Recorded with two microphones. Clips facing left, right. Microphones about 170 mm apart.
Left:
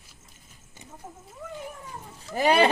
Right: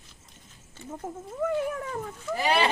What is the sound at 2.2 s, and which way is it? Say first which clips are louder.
Speech: left 5 dB; 45° left (ahead or behind).